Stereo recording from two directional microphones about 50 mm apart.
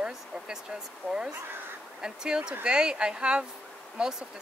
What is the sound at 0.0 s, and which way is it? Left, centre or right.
Speech, centre.